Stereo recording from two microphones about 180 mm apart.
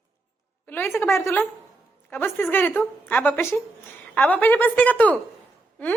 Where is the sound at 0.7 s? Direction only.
10° left (ahead or behind).